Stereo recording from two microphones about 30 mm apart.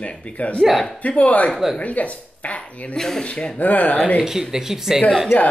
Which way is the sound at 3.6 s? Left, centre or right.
Left.